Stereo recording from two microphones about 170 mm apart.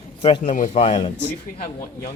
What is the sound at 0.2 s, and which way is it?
Speech, 35° left (ahead or behind).